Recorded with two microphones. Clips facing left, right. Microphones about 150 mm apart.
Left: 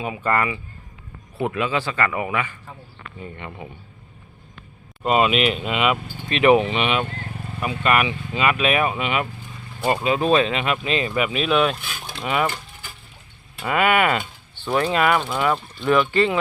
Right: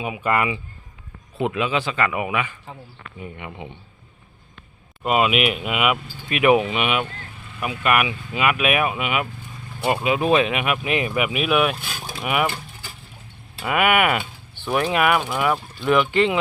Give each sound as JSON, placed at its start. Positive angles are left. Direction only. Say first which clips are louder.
{"t": 0.0, "sound": "speech", "louder": "even", "side_deg": -15}
{"t": 5.0, "sound": "speech", "louder": "left 1 dB", "side_deg": -5}
{"t": 7.3, "sound": "vehicle", "louder": "left 8 dB", "side_deg": 40}
{"t": 7.9, "sound": "speech", "louder": "even", "side_deg": -5}
{"t": 13.6, "sound": "speech", "louder": "even", "side_deg": -10}